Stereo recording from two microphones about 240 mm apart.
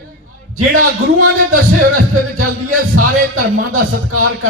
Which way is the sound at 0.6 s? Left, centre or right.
Right.